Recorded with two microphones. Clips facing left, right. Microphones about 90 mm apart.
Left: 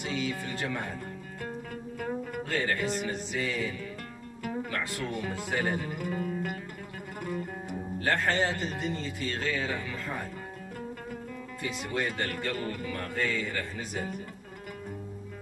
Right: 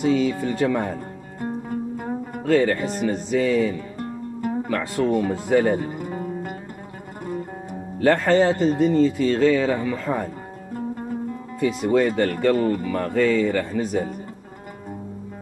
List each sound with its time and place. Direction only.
0.0 s music: 40° right (ahead or behind)
8.1 s speech: 30° right (ahead or behind)
11.6 s speech: 35° right (ahead or behind)